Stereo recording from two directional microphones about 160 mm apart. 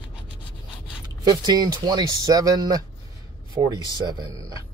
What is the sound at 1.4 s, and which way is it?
Speech, 25° right (ahead or behind).